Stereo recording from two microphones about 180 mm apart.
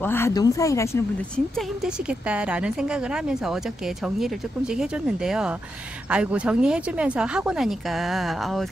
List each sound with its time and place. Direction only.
0.0 s speech: 15° left (ahead or behind)
2.0 s a woman's voice: 5° right (ahead or behind)